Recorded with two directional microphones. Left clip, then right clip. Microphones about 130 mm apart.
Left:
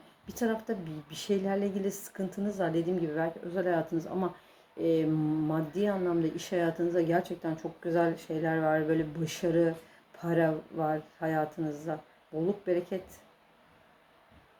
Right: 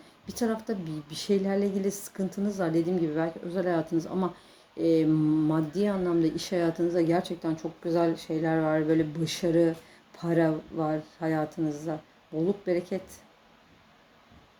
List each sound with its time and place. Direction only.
0.3 s speech: 45° right (ahead or behind)